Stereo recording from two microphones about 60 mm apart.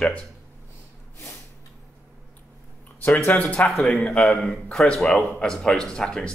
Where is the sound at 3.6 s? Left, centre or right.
Left.